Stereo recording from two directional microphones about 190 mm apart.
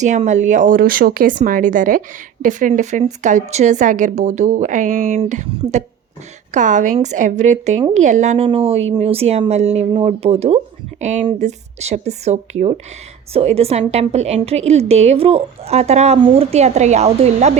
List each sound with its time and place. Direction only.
0.0 s speech: 40° right (ahead or behind)